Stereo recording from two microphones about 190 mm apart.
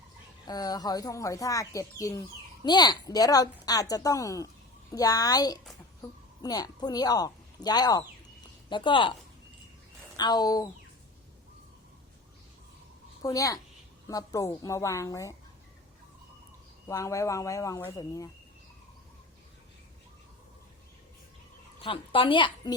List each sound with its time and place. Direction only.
0.4 s a woman's voice: 20° left (ahead or behind)
10.2 s a woman's voice: 20° left (ahead or behind)
13.2 s speech: 15° left (ahead or behind)
16.9 s speech: 15° left (ahead or behind)
21.8 s a woman's voice: 30° left (ahead or behind)